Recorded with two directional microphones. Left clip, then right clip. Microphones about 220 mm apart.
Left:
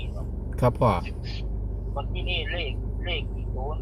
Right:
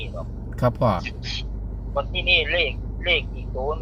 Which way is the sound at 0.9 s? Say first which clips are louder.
Right 5 dB; 30° right (ahead or behind).